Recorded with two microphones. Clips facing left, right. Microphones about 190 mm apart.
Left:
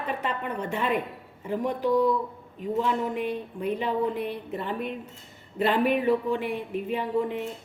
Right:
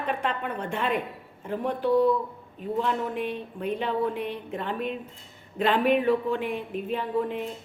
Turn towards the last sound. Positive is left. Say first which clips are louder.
# left 1 dB
turn(degrees=10)  # may be behind; listen again after turning